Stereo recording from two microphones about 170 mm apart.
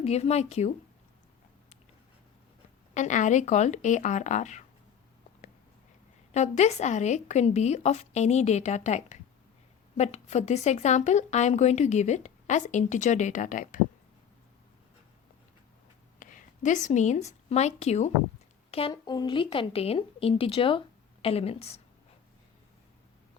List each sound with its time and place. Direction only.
0.0 s speech: 40° left (ahead or behind)
2.9 s a woman's voice: 45° left (ahead or behind)
6.3 s a woman's voice: 40° left (ahead or behind)
16.2 s a woman's voice: 50° left (ahead or behind)